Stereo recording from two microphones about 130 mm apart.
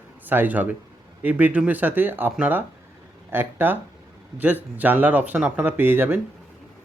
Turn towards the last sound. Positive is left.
turn(degrees=-15)  # may be behind; listen again after turning